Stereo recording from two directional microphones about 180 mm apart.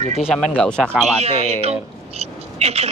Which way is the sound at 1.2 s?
35° right (ahead or behind).